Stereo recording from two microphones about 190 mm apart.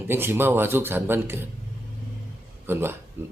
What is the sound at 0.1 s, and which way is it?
Speech, 10° right (ahead or behind).